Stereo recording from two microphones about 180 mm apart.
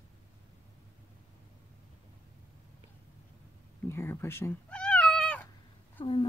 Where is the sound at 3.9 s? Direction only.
15° left (ahead or behind).